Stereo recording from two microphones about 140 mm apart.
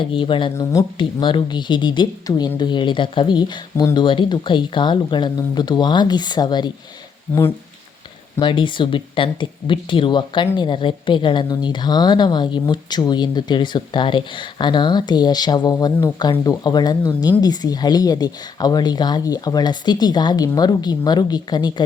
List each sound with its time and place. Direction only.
0.0 s speech: 35° left (ahead or behind)
0.5 s speech: 20° left (ahead or behind)
0.9 s speech: 35° left (ahead or behind)
8.4 s speech: 35° left (ahead or behind)